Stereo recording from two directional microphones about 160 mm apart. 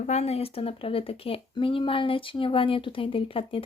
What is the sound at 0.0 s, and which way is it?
Speech, 45° left (ahead or behind).